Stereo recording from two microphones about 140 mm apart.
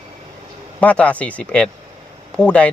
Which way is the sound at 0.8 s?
10° left (ahead or behind).